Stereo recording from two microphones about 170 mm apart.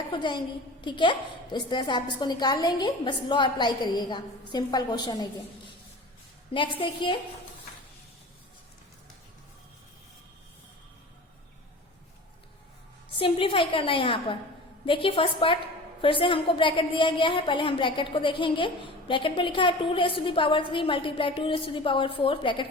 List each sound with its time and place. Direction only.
0.1 s a woman's voice: 25° left (ahead or behind)
6.7 s a woman's voice: 30° left (ahead or behind)
13.1 s a woman's voice: 30° left (ahead or behind)